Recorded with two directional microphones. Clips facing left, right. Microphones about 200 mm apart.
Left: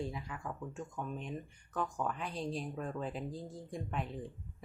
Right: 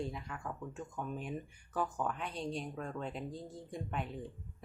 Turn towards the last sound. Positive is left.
turn(degrees=0)  # may be behind; listen again after turning